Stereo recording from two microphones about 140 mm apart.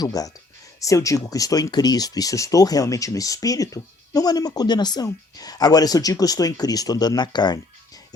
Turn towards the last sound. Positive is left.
turn(degrees=30)  # may be behind; listen again after turning